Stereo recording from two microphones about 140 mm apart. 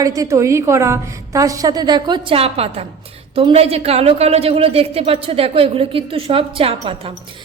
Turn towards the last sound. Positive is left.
turn(degrees=-40)  # may be behind; listen again after turning